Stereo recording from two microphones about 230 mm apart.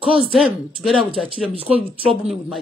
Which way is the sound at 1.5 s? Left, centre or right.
Right.